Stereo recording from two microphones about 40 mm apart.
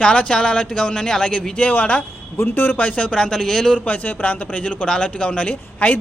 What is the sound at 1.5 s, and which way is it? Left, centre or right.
Speech, left.